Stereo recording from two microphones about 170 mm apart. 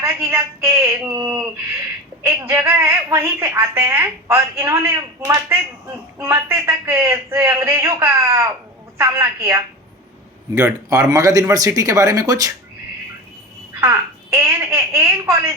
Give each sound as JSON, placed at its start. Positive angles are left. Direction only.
{"t": 0.0, "sound": "a woman's voice", "side_deg": -15}
{"t": 10.6, "sound": "speech", "side_deg": -15}
{"t": 13.8, "sound": "a woman's voice", "side_deg": -15}